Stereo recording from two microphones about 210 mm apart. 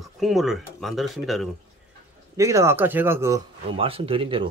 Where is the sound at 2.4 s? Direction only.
15° right (ahead or behind).